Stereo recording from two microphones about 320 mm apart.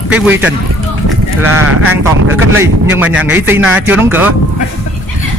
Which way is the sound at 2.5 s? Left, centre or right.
Centre.